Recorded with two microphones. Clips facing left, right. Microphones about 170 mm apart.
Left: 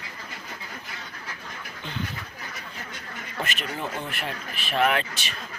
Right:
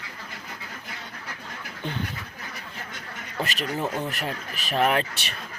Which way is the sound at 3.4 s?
35° right (ahead or behind).